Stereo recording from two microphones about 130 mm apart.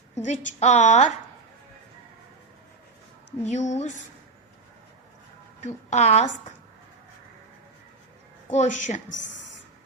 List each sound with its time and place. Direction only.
0.1 s a woman's voice: 70° left (ahead or behind)
3.4 s a woman's voice: 60° left (ahead or behind)
5.6 s a woman's voice: 65° left (ahead or behind)
8.4 s speech: 75° left (ahead or behind)